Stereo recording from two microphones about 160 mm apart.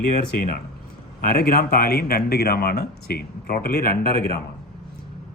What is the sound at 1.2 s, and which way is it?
Speech, 75° left (ahead or behind).